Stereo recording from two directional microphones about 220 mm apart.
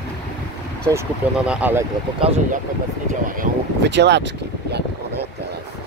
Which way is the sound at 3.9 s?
50° right (ahead or behind).